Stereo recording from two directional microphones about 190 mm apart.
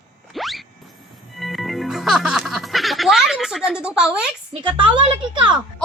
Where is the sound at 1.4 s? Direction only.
Centre (ahead or behind).